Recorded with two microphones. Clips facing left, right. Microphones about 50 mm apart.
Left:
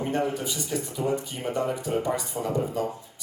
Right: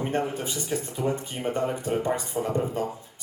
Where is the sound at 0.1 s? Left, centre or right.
Right.